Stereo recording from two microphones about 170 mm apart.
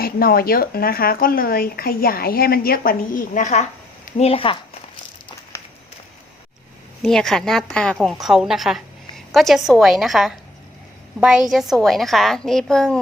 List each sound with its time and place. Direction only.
0.0 s speech: 60° left (ahead or behind); by 4.5 s 35° left (ahead or behind)
7.0 s a woman's voice: 5° left (ahead or behind)